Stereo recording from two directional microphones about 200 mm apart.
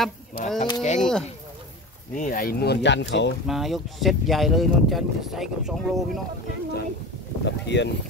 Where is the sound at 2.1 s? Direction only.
45° left (ahead or behind); by 3.3 s 60° left (ahead or behind).